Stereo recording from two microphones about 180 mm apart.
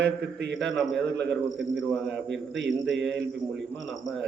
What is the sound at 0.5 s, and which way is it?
A man's voice, centre (ahead or behind).